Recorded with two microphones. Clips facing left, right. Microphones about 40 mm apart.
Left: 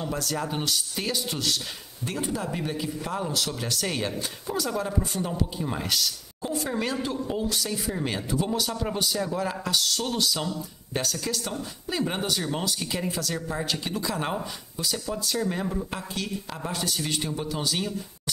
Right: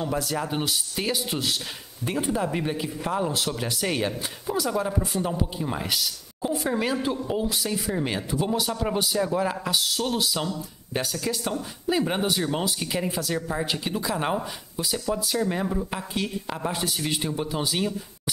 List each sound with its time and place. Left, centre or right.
0.0 s speech: centre